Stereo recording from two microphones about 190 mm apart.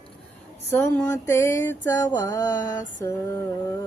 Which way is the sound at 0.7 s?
15° left (ahead or behind).